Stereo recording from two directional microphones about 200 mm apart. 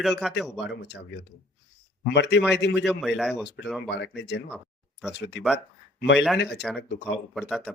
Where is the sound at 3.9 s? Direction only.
55° left (ahead or behind).